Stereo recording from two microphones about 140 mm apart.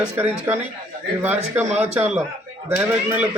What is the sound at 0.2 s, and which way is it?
Speech, 15° right (ahead or behind).